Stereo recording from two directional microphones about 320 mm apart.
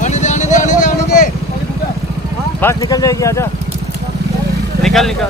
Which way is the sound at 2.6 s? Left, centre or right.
Centre.